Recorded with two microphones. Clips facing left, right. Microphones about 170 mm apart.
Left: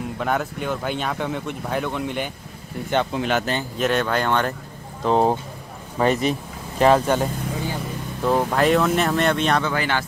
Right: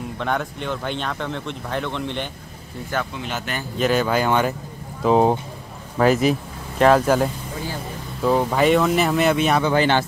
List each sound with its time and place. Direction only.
0.2 s speech: 5° left (ahead or behind)
2.9 s speech: 25° left (ahead or behind)
3.7 s speech: centre (ahead or behind)
9.7 s speech: 25° right (ahead or behind)